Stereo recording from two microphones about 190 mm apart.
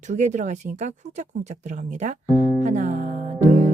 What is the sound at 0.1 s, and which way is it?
Speech, 40° right (ahead or behind).